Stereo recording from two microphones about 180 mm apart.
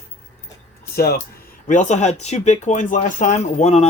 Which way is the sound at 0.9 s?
60° left (ahead or behind).